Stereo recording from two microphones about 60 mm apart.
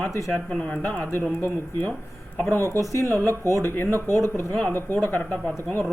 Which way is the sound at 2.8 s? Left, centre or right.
Left.